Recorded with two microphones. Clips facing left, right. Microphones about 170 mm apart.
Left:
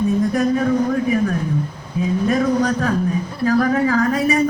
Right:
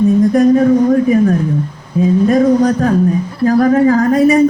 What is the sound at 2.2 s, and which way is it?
A woman's voice, 40° right (ahead or behind).